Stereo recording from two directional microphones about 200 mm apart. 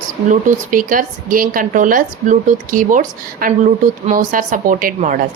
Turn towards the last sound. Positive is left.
turn(degrees=-40)  # may be behind; listen again after turning